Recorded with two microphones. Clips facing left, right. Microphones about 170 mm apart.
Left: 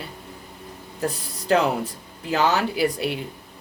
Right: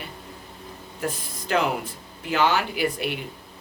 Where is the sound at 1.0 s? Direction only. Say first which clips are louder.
Left 4 dB; 35° left (ahead or behind).